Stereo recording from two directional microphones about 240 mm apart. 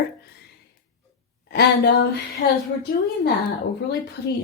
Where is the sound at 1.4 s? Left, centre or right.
Left.